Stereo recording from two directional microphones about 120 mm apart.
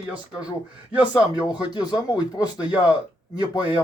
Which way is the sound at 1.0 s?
40° left (ahead or behind).